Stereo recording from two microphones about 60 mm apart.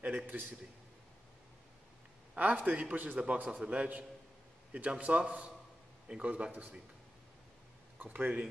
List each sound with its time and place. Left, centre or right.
0.0 s a man's voice: right
2.3 s a man's voice: right
8.0 s a man's voice: right